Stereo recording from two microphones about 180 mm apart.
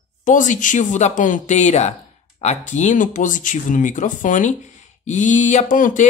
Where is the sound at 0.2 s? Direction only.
45° left (ahead or behind).